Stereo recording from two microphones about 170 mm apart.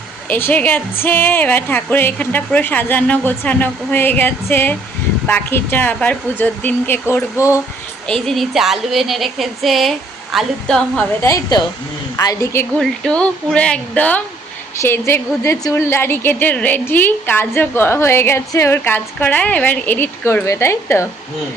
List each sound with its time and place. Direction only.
0.3 s a woman's voice: 10° left (ahead or behind)
11.2 s a woman's voice: 20° left (ahead or behind)
12.8 s a woman's voice: 5° left (ahead or behind)